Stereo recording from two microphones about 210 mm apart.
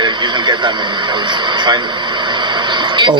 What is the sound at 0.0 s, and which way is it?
Speech, 20° right (ahead or behind).